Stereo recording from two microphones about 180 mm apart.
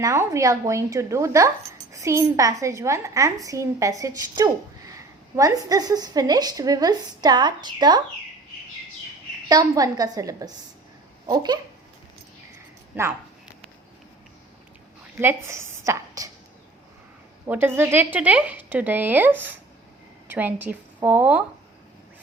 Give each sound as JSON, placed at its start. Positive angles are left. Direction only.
{"t": 0.0, "sound": "a woman's voice", "side_deg": -15}
{"t": 9.5, "sound": "speech", "side_deg": -20}
{"t": 12.9, "sound": "a woman's voice", "side_deg": -10}
{"t": 15.2, "sound": "a woman's voice", "side_deg": -15}
{"t": 17.4, "sound": "a woman's voice", "side_deg": -10}